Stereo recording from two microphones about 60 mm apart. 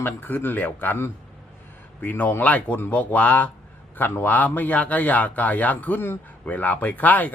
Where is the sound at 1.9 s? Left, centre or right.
Left.